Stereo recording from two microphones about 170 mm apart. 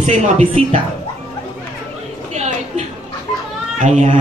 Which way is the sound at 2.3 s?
40° right (ahead or behind).